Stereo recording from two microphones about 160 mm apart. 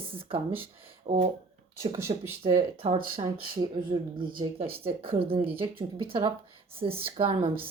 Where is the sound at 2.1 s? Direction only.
35° right (ahead or behind).